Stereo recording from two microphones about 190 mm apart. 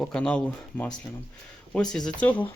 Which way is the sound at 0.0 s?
5° left (ahead or behind).